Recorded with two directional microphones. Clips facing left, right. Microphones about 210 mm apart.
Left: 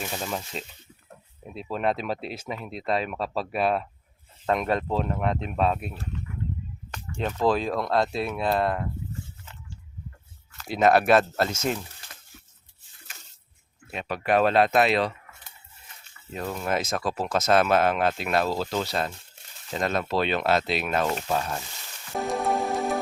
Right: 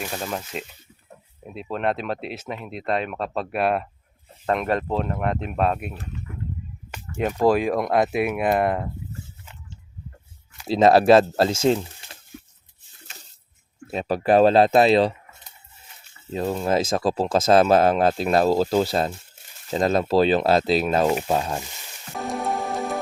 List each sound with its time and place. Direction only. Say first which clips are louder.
0.0 s speech: right 2 dB; centre (ahead or behind)
1.7 s speech: right 2 dB; centre (ahead or behind)
6.9 s speech: right 5 dB; 10° right (ahead or behind)
10.7 s speech: right 5 dB; 30° right (ahead or behind)
13.9 s speech: right 6 dB; 35° right (ahead or behind)
22.2 s music: left 1 dB; centre (ahead or behind)